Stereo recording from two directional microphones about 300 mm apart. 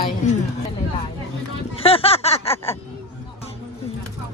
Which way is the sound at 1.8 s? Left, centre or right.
Centre.